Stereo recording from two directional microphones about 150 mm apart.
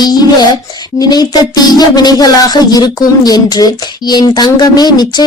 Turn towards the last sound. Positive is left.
turn(degrees=25)  # may be behind; listen again after turning